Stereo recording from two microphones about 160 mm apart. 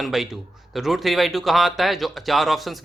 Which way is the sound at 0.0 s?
Centre (ahead or behind).